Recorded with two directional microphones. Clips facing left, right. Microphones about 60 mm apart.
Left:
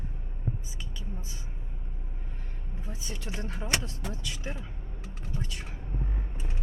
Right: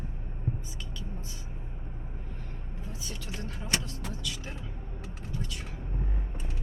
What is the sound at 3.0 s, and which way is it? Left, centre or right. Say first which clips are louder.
Speech: left 3 dB; left.